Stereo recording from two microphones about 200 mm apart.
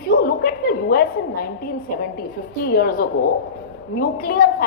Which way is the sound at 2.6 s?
50° left (ahead or behind).